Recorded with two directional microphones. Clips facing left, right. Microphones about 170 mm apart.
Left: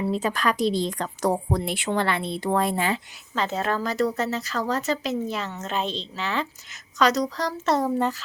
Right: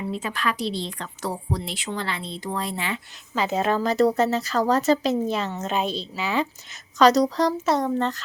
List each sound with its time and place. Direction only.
0.0 s a woman's voice: 40° left (ahead or behind)
3.3 s a woman's voice: 10° right (ahead or behind)
7.0 s a woman's voice: 35° right (ahead or behind)
7.6 s speech: centre (ahead or behind)